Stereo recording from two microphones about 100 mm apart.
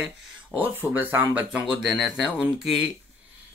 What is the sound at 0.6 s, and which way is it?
Speech, 20° right (ahead or behind).